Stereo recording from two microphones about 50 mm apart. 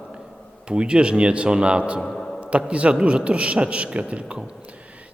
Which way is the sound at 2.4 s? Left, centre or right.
Right.